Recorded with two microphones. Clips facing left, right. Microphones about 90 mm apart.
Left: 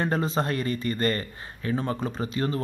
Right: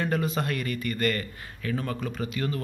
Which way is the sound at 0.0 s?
30° left (ahead or behind).